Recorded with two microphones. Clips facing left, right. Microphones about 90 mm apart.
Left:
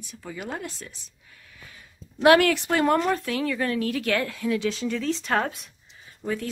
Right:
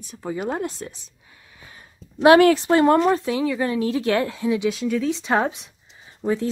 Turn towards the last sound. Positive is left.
turn(degrees=-25)  # may be behind; listen again after turning